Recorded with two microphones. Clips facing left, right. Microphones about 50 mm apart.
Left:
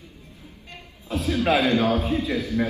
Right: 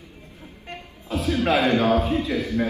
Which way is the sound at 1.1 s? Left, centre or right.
Right.